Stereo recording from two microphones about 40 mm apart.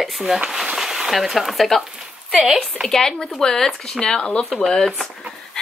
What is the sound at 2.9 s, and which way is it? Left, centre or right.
Speech, centre.